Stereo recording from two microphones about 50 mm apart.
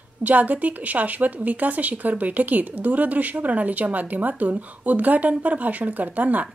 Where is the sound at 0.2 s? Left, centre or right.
Right.